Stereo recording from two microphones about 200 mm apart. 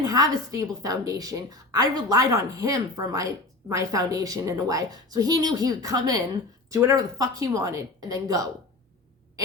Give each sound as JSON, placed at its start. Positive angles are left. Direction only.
{"t": 0.0, "sound": "a woman's voice", "side_deg": -15}